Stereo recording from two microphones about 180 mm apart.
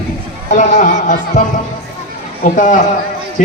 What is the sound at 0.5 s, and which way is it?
A man's voice, 45° left (ahead or behind).